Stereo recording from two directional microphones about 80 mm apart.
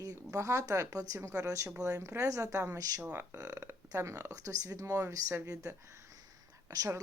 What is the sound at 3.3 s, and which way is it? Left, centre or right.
Speech, right.